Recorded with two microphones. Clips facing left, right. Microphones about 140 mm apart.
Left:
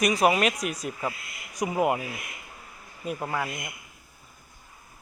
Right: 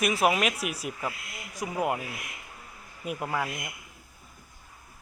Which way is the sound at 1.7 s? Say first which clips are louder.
Left 4 dB; 5° left (ahead or behind).